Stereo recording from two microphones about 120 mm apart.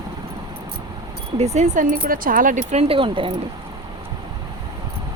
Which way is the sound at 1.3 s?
70° right (ahead or behind).